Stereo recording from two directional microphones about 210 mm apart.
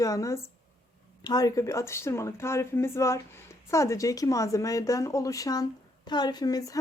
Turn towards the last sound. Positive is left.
turn(degrees=15)  # may be behind; listen again after turning